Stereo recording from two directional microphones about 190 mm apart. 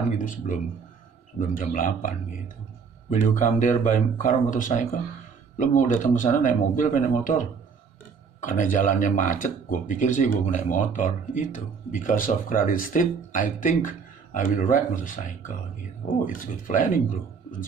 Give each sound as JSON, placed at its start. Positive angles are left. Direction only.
{"t": 0.2, "sound": "speech", "side_deg": 45}